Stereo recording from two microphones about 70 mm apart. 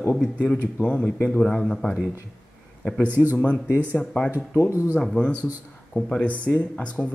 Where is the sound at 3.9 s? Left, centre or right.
Centre.